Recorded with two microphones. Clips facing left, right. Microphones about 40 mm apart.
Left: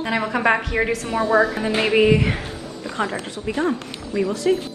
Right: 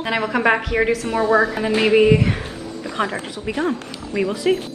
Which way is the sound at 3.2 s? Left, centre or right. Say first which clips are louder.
Even; right.